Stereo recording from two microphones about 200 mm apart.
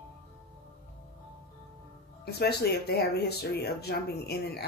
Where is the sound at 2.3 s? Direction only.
55° left (ahead or behind).